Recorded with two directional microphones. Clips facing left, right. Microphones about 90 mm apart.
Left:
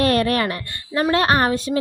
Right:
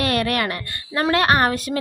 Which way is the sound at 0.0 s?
35° left (ahead or behind).